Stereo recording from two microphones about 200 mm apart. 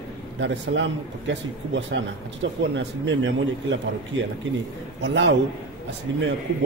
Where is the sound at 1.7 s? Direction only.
65° right (ahead or behind).